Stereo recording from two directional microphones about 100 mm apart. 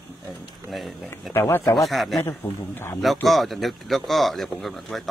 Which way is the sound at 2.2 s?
20° left (ahead or behind).